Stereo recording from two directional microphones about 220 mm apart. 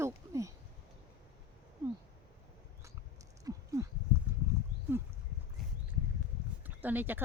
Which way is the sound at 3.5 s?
15° right (ahead or behind).